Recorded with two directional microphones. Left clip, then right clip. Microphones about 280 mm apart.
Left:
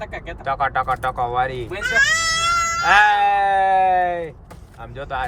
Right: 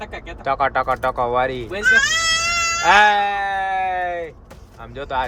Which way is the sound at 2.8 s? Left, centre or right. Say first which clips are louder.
Right 1 dB; centre.